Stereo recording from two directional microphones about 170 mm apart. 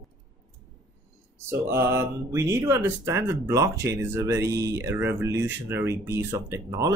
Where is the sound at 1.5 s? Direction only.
15° right (ahead or behind).